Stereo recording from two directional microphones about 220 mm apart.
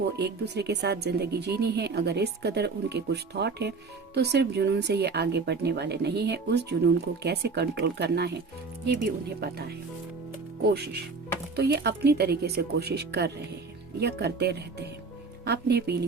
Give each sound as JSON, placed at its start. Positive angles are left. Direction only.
{"t": 0.2, "sound": "speech", "side_deg": -50}
{"t": 11.5, "sound": "speech", "side_deg": -45}